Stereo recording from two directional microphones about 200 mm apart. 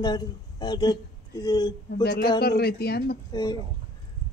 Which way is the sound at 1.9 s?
55° left (ahead or behind).